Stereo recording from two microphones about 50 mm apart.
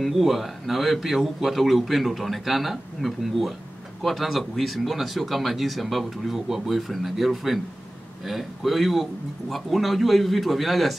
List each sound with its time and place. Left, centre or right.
0.0 s speech: centre